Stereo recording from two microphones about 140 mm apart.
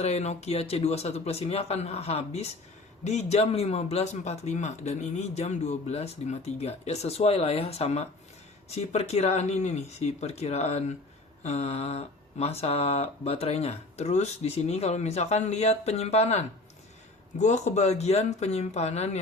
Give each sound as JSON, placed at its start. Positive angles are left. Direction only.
{"t": 0.0, "sound": "speech", "side_deg": 50}